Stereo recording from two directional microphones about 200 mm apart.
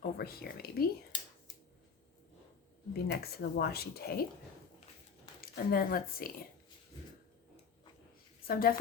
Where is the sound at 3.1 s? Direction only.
55° left (ahead or behind).